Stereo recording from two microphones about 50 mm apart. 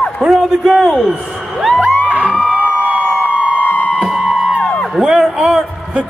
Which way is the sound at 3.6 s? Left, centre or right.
Left.